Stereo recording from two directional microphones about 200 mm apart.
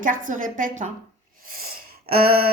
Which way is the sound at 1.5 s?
45° right (ahead or behind).